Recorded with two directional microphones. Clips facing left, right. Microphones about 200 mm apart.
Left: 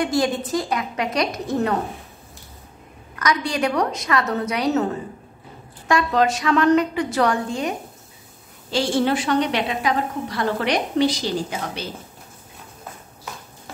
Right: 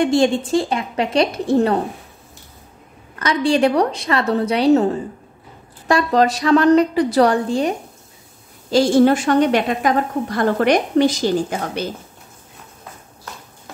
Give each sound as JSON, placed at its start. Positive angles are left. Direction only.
{"t": 0.0, "sound": "a woman's voice", "side_deg": -25}
{"t": 3.2, "sound": "a woman's voice", "side_deg": -30}
{"t": 5.9, "sound": "a woman's voice", "side_deg": -35}